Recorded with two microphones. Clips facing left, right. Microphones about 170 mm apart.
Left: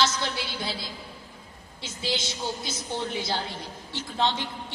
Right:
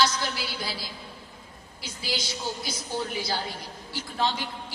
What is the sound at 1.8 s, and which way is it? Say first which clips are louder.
Speech: left 3 dB; 25° left (ahead or behind).